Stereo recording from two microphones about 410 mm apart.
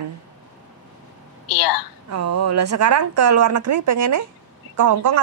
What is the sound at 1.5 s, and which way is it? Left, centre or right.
Speech, left.